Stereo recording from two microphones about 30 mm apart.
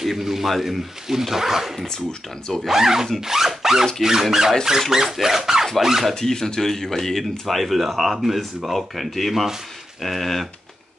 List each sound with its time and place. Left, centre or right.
0.0 s a sound: centre
0.6 s speech: centre
1.9 s speech: centre
2.7 s speech: centre
5.2 s a sound: centre
5.8 s speech: centre
6.1 s speech: centre
7.4 s speech: centre